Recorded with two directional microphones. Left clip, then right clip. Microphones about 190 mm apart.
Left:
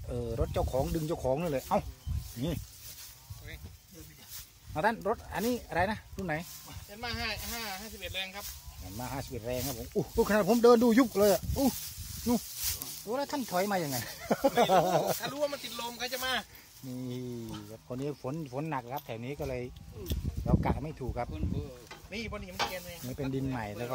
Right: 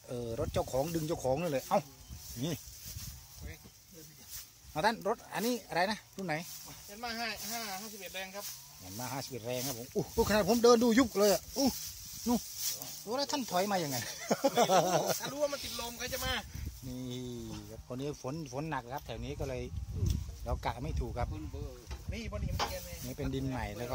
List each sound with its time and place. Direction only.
0.1 s speech: centre (ahead or behind)
4.7 s speech: centre (ahead or behind)
7.0 s speech: 30° right (ahead or behind)
8.9 s speech: centre (ahead or behind)
13.0 s speech: 5° right (ahead or behind); by 16.4 s 25° left (ahead or behind)
17.0 s speech: centre (ahead or behind)
22.1 s stir: 40° left (ahead or behind)
22.6 s speech: centre (ahead or behind)